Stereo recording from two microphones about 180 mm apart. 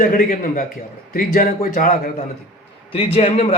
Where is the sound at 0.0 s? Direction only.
50° left (ahead or behind).